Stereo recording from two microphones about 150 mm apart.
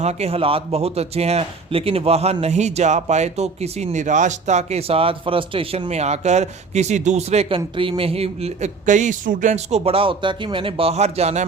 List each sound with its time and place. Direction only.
0.0 s speech: 45° right (ahead or behind)